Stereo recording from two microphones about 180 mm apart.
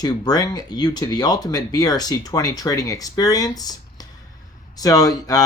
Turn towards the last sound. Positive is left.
turn(degrees=20)  # may be behind; listen again after turning